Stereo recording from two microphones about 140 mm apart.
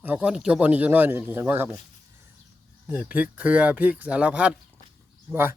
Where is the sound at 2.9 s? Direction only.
10° right (ahead or behind).